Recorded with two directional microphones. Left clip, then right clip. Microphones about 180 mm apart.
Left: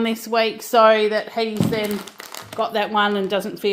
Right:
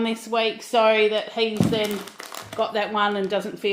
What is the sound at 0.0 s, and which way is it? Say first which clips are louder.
Speech: left 3 dB; 35° left (ahead or behind).